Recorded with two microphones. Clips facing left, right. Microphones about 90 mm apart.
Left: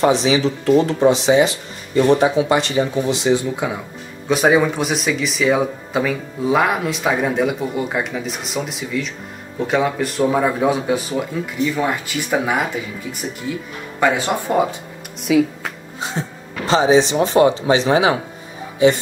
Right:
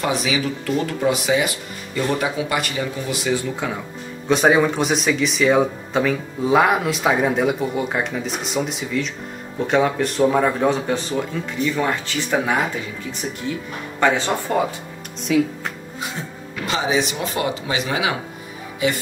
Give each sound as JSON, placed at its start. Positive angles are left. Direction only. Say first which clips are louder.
{"t": 0.0, "sound": "speech", "louder": "left 6 dB", "side_deg": 30}
{"t": 4.3, "sound": "speech", "louder": "left 1 dB", "side_deg": 0}
{"t": 13.9, "sound": "speech", "louder": "left 1 dB", "side_deg": 10}
{"t": 15.3, "sound": "speech", "louder": "left 3 dB", "side_deg": 5}
{"t": 16.6, "sound": "speech", "louder": "left 7 dB", "side_deg": 30}